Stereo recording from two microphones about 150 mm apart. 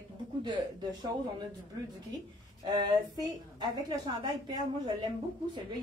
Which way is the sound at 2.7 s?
30° right (ahead or behind).